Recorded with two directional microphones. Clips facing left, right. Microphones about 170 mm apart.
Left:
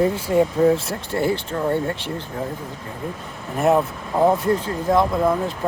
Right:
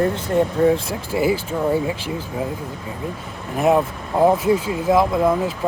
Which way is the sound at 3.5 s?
Centre (ahead or behind).